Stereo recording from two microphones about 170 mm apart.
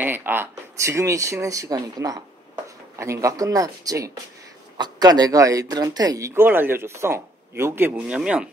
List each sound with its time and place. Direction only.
0.0 s speech: 10° right (ahead or behind)